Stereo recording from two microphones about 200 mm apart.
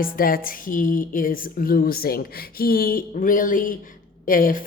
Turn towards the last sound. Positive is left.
turn(degrees=45)  # may be behind; listen again after turning